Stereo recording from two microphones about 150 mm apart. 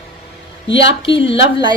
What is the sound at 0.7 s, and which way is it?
Speech, 35° left (ahead or behind).